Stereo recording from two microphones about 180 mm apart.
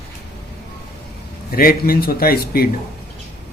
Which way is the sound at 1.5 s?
55° left (ahead or behind).